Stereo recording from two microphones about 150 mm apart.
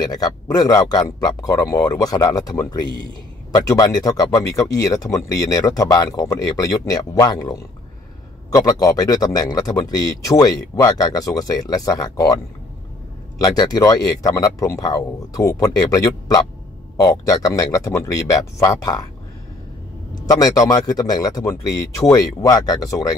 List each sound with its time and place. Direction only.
0.0 s speech: 25° left (ahead or behind)
13.4 s speech: 25° left (ahead or behind)
20.2 s speech: 25° left (ahead or behind)